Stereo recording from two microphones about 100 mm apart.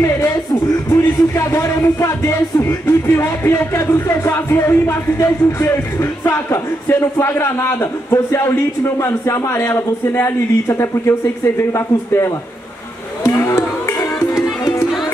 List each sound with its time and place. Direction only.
0.0 s music: 35° left (ahead or behind)
1.0 s speech: 30° left (ahead or behind)
13.2 s music: 30° left (ahead or behind)